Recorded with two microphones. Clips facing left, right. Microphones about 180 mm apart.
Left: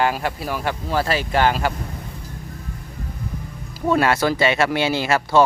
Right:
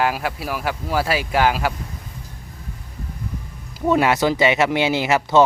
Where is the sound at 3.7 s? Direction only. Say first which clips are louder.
Right 1 dB; 15° right (ahead or behind).